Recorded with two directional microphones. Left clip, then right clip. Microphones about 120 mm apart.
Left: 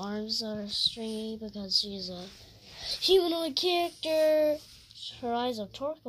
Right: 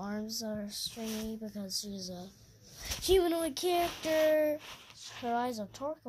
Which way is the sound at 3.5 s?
55° right (ahead or behind).